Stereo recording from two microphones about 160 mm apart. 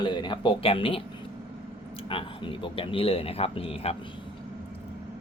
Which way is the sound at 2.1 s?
35° left (ahead or behind).